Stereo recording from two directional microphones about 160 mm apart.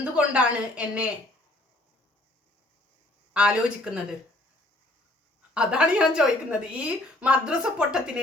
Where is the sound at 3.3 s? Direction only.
5° right (ahead or behind).